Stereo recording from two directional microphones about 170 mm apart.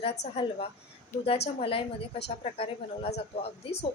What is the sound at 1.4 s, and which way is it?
A woman's voice, 35° left (ahead or behind).